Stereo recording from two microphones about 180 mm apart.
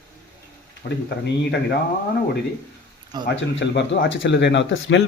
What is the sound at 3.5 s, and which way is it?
Speech, 85° left.